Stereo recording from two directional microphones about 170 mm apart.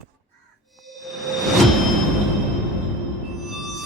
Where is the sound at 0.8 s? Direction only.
Centre (ahead or behind).